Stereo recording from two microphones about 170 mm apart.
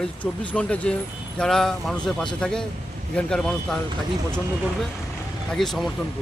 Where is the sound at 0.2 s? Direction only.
5° left (ahead or behind).